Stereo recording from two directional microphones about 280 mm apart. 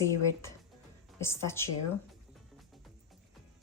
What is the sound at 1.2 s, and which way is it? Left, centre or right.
Speech, centre.